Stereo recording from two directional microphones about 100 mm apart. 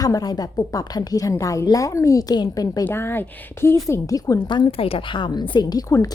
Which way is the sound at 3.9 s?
35° left (ahead or behind).